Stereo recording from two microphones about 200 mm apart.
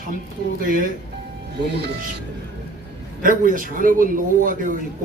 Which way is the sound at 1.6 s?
55° right (ahead or behind).